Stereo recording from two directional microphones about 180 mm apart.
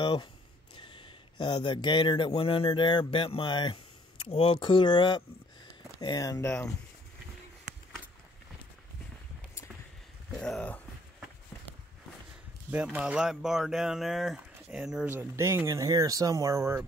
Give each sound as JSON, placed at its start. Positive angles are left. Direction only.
{"t": 0.0, "sound": "speech", "side_deg": 25}
{"t": 10.3, "sound": "speech", "side_deg": 5}
{"t": 12.7, "sound": "speech", "side_deg": -5}